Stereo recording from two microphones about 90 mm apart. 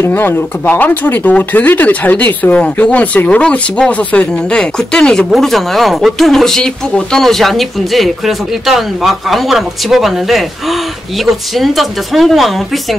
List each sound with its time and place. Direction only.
0.0 s speech: 25° left (ahead or behind); by 12.5 s centre (ahead or behind)